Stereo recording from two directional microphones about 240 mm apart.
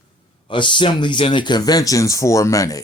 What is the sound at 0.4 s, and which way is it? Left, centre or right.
Speech, centre.